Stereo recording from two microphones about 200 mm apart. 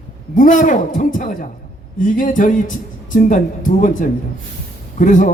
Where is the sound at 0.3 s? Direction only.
40° left (ahead or behind).